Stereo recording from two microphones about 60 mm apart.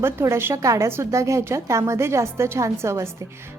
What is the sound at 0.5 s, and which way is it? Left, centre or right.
A woman's voice, right.